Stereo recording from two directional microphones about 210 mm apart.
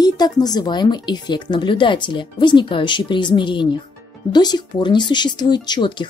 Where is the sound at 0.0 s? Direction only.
20° left (ahead or behind).